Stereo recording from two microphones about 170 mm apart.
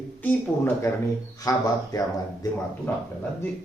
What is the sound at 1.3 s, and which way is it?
Speech, 20° left (ahead or behind).